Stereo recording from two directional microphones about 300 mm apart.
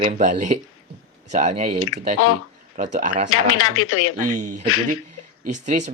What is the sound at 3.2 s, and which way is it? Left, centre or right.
Speech, left.